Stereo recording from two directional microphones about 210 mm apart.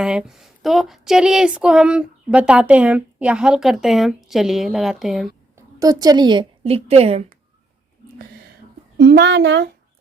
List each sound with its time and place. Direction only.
0.0 s speech: 5° right (ahead or behind)
5.5 s a woman's voice: 15° right (ahead or behind)
9.0 s speech: 55° right (ahead or behind)